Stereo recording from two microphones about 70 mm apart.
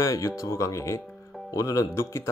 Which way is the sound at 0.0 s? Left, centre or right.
Left.